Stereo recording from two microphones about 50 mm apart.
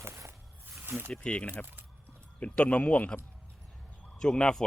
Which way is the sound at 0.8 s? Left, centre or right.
Right.